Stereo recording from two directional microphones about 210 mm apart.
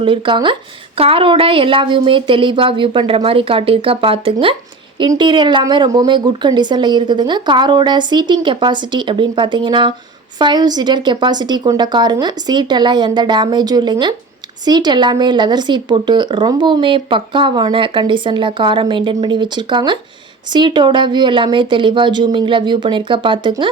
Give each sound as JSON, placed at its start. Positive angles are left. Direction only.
{"t": 0.0, "sound": "speech", "side_deg": -25}